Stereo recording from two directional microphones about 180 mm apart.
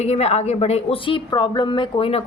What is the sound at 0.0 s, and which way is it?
A woman's voice, 35° left (ahead or behind).